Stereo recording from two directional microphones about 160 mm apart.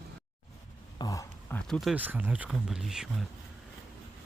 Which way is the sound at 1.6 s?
Centre (ahead or behind).